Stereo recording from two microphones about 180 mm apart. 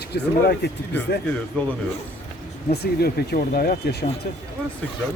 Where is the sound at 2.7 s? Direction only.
60° left (ahead or behind).